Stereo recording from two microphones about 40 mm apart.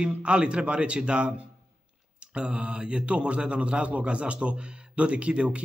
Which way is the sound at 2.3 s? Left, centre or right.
Right.